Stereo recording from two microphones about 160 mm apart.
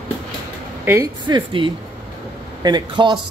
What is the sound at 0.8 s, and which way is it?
Speech, 15° right (ahead or behind).